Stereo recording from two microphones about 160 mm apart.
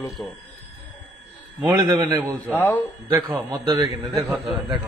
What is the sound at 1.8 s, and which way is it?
Speech, 20° right (ahead or behind).